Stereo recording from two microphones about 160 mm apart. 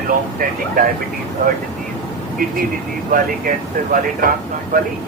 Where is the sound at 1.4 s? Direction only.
60° right (ahead or behind).